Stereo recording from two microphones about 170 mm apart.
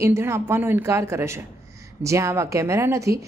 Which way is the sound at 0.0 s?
15° right (ahead or behind).